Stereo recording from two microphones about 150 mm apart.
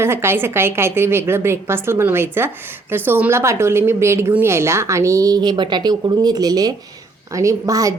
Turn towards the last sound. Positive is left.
turn(degrees=-20)  # may be behind; listen again after turning